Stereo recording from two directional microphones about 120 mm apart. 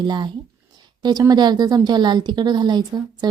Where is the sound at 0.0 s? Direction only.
40° right (ahead or behind).